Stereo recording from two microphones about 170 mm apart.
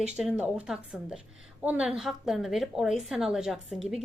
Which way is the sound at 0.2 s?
5° right (ahead or behind).